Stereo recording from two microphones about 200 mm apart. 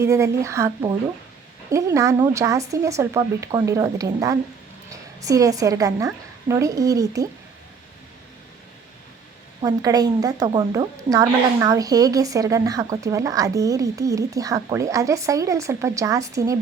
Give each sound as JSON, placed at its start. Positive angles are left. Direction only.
{"t": 0.0, "sound": "a woman's voice", "side_deg": -15}
{"t": 9.6, "sound": "a woman's voice", "side_deg": -20}